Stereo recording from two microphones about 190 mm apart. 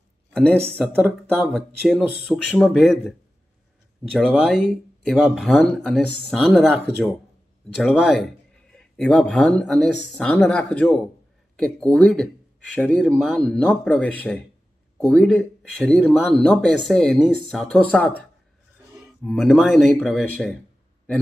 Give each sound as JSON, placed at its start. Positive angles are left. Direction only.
{"t": 0.3, "sound": "speech", "side_deg": 5}
{"t": 0.8, "sound": "speech", "side_deg": -5}